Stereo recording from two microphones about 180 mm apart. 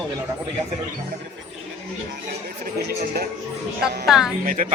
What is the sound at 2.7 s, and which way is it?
Speech, 65° right (ahead or behind).